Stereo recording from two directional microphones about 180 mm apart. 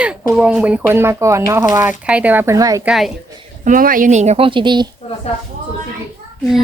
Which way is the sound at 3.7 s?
50° right (ahead or behind).